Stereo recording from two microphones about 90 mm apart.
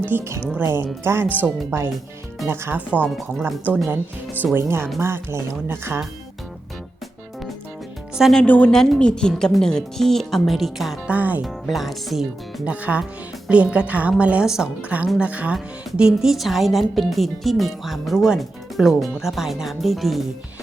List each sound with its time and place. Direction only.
0.0 s speech: 25° right (ahead or behind)
4.5 s speech: 25° right (ahead or behind)
8.1 s speech: 5° right (ahead or behind)
8.4 s a woman's voice: 15° left (ahead or behind)
8.7 s a woman's voice: 5° left (ahead or behind)
11.1 s speech: 20° right (ahead or behind)
11.7 s a woman's voice: centre (ahead or behind)
12.6 s a woman's voice: 15° right (ahead or behind)
15.5 s a woman's voice: 5° right (ahead or behind)